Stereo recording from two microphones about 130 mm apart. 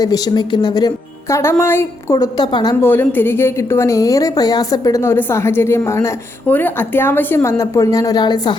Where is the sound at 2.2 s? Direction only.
35° left (ahead or behind).